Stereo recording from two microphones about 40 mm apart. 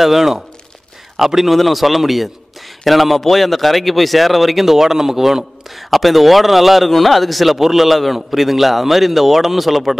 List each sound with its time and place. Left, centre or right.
0.0 s speech: centre